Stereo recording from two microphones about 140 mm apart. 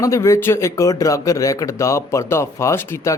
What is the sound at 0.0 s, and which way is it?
Speech, 20° left (ahead or behind).